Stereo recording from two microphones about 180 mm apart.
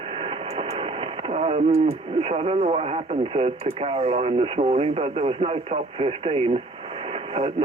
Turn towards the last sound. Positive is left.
turn(degrees=-30)  # may be behind; listen again after turning